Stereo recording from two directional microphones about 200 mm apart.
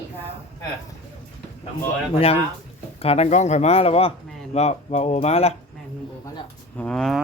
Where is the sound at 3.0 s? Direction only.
30° left (ahead or behind).